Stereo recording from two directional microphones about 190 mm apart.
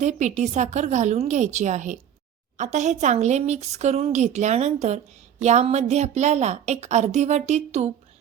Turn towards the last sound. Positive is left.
turn(degrees=-35)  # may be behind; listen again after turning